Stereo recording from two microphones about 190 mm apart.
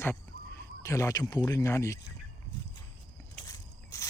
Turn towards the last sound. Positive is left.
turn(degrees=20)  # may be behind; listen again after turning